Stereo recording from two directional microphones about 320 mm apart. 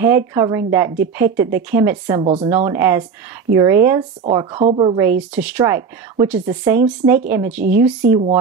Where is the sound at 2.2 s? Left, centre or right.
Centre.